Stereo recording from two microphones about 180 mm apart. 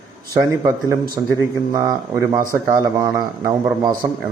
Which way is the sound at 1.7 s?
20° right (ahead or behind).